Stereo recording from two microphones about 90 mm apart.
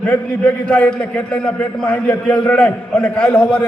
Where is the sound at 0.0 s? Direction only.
10° left (ahead or behind).